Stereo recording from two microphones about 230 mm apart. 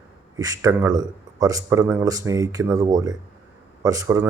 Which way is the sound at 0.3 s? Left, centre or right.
Centre.